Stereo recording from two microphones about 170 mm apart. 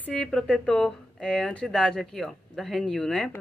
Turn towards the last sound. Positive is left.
turn(degrees=5)  # may be behind; listen again after turning